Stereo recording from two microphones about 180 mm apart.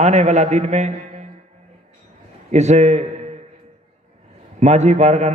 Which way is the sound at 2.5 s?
40° right (ahead or behind).